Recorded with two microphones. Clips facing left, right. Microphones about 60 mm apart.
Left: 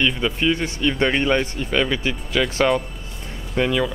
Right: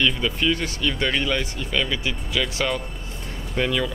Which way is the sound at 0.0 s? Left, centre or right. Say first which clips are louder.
Left 2 dB; centre.